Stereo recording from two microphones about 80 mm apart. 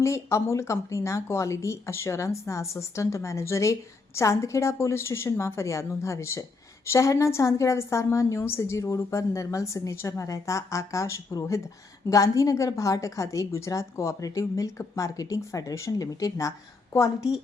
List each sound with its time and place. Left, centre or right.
0.0 s a woman's voice: left